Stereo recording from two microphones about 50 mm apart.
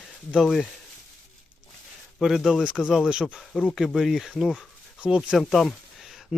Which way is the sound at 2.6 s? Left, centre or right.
Centre.